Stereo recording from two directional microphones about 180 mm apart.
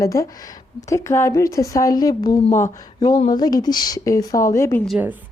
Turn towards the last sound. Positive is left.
turn(degrees=-10)  # may be behind; listen again after turning